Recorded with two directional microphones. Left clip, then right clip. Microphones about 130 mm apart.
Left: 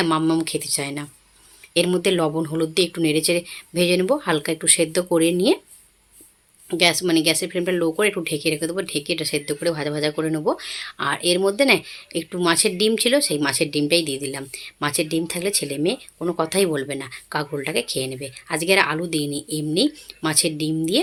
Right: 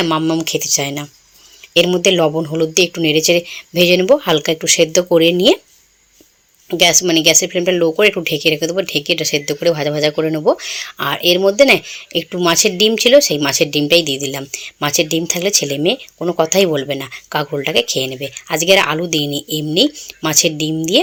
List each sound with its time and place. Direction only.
0.0 s speech: 10° right (ahead or behind)
6.7 s speech: 20° right (ahead or behind)